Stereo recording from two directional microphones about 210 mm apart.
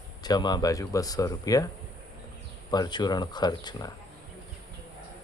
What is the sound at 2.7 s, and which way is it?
Speech, 20° left (ahead or behind).